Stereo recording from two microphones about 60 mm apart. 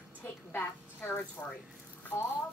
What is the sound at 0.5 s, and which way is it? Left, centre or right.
Speech, left.